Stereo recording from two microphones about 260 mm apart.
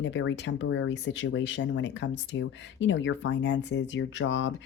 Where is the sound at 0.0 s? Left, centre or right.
Left.